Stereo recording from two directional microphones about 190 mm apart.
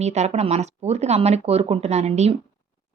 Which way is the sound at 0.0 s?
35° right (ahead or behind).